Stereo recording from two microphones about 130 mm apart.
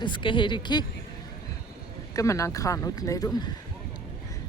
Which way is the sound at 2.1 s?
25° left (ahead or behind).